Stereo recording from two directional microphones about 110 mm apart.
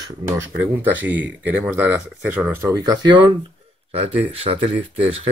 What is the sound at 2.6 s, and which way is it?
Speech, 35° right (ahead or behind).